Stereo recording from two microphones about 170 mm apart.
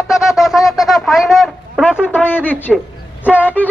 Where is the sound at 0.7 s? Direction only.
Centre (ahead or behind).